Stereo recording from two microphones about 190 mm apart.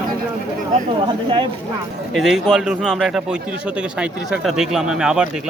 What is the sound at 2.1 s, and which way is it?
Speech, centre (ahead or behind).